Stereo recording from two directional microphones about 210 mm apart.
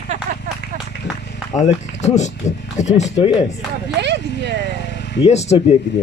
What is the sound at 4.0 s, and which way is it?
Vehicle, 55° right (ahead or behind).